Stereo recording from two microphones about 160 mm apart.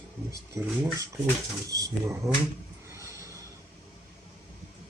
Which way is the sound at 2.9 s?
20° right (ahead or behind).